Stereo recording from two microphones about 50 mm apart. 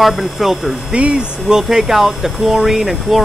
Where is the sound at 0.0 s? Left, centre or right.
Centre.